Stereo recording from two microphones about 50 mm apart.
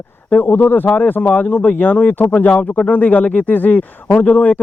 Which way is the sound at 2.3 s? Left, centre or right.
Left.